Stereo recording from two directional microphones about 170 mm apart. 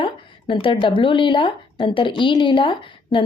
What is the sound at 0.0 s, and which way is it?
A woman's voice, 30° left (ahead or behind).